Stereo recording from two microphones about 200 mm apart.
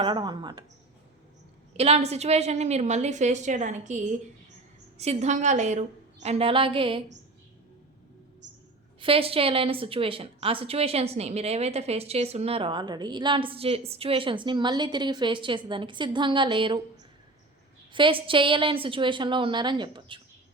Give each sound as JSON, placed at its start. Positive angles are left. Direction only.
{"t": 0.0, "sound": "a woman's voice", "side_deg": -25}
{"t": 1.7, "sound": "a woman's voice", "side_deg": -30}
{"t": 9.0, "sound": "a woman's voice", "side_deg": -25}
{"t": 17.9, "sound": "a woman's voice", "side_deg": -25}